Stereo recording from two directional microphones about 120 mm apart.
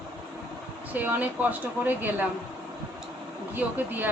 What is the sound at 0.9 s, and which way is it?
Speech, 15° right (ahead or behind).